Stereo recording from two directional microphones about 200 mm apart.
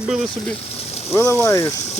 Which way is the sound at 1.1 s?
10° left (ahead or behind).